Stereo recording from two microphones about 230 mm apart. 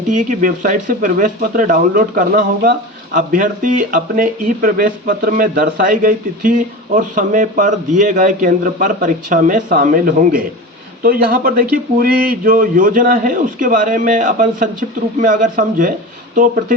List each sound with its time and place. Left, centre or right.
0.1 s speech: right